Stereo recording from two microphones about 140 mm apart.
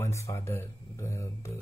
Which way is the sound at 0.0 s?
20° left (ahead or behind).